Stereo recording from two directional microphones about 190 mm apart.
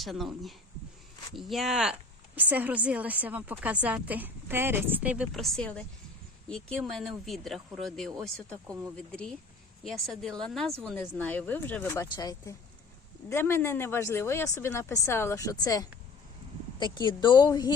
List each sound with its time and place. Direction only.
0.0 s speech: centre (ahead or behind)
1.4 s a woman's voice: centre (ahead or behind); by 17.7 s 20° left (ahead or behind)